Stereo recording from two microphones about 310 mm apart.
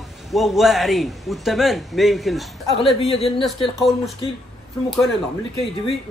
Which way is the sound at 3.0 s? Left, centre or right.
Centre.